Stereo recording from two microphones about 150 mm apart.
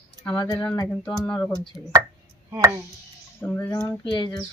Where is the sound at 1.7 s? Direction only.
Centre (ahead or behind).